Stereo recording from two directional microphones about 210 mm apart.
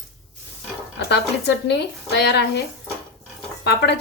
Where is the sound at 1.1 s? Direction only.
55° left (ahead or behind).